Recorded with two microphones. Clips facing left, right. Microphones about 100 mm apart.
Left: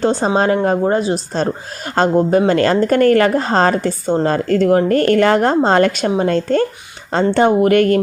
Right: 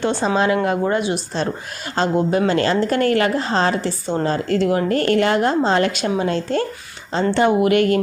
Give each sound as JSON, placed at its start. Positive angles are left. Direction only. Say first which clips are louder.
{"t": 0.0, "sound": "a woman's voice", "louder": "left 3 dB", "side_deg": 45}